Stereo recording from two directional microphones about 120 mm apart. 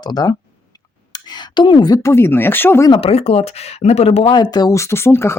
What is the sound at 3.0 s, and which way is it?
Speech, 55° left (ahead or behind).